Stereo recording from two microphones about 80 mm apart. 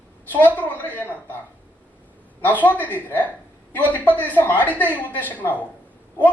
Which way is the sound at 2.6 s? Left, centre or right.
Left.